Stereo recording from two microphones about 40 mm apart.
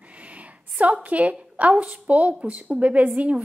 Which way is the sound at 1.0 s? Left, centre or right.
Right.